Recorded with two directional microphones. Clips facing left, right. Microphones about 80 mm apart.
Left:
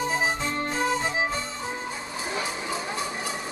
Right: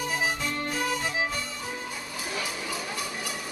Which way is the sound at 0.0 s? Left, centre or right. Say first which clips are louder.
Left 3 dB; left.